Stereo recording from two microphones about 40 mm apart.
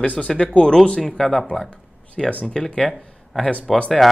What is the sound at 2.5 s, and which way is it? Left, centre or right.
Speech, centre.